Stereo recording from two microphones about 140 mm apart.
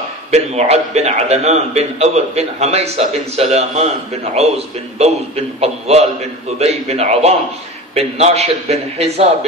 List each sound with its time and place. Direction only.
0.3 s a man's voice: 50° right (ahead or behind)